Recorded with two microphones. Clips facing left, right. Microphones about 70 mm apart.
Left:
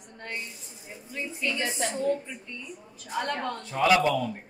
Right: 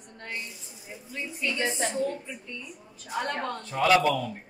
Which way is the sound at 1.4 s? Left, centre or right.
Centre.